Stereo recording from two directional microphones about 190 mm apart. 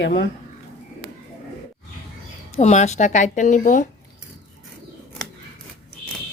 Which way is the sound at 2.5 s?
35° left (ahead or behind).